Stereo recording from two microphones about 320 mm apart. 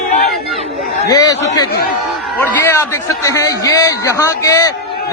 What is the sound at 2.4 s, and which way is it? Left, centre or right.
A man's voice, centre.